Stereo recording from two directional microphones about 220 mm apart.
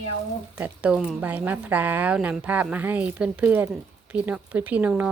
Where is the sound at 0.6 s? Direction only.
5° right (ahead or behind).